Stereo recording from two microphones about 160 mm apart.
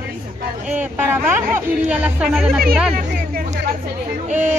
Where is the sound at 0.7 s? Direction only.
15° right (ahead or behind).